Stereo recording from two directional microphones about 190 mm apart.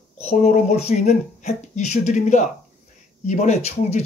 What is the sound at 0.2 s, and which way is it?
Speech, 35° left (ahead or behind).